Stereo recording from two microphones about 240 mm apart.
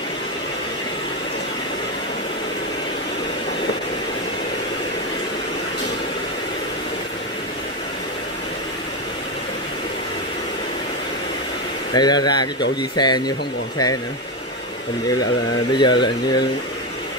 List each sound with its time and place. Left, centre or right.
11.9 s speech: centre
15.7 s speech: centre